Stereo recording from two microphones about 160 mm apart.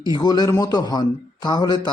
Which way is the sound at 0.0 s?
25° left (ahead or behind).